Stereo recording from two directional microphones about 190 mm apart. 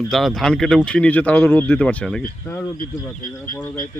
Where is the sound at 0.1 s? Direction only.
Centre (ahead or behind).